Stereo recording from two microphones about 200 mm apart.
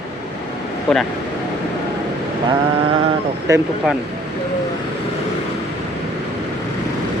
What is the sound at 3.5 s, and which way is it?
Speech, 15° right (ahead or behind).